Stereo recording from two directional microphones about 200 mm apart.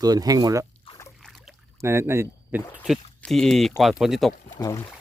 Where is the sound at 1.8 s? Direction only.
15° right (ahead or behind).